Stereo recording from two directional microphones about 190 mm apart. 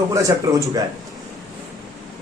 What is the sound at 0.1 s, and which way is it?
Speech, 15° right (ahead or behind).